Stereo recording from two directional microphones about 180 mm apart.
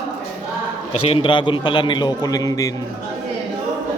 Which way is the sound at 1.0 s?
30° left (ahead or behind).